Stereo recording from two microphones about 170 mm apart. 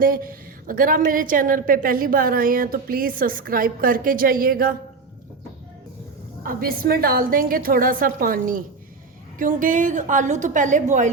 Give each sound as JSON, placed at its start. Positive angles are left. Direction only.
{"t": 0.0, "sound": "a woman's voice", "side_deg": -55}
{"t": 6.4, "sound": "a woman's voice", "side_deg": -55}